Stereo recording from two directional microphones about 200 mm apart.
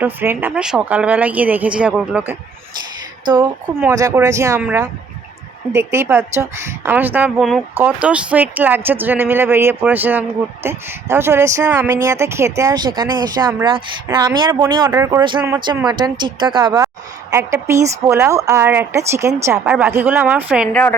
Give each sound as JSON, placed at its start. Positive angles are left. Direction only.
{"t": 0.0, "sound": "speech", "side_deg": -10}
{"t": 3.2, "sound": "a woman's voice", "side_deg": -20}